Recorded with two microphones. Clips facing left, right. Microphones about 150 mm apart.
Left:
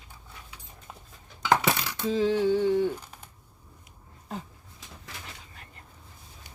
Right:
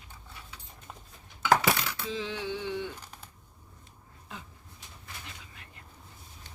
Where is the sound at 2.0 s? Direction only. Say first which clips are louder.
Left 16 dB; 40° left (ahead or behind).